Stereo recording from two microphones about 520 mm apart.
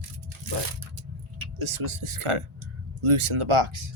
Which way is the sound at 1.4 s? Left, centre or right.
Right.